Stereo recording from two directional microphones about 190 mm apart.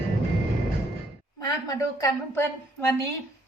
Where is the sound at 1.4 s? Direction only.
20° left (ahead or behind).